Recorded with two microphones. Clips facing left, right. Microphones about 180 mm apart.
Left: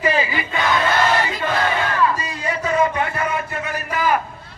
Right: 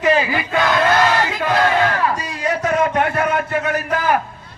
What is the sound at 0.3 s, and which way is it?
Crowd, 70° right (ahead or behind).